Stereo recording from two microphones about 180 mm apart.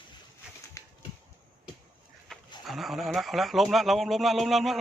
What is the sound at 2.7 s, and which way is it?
A man's voice, centre (ahead or behind).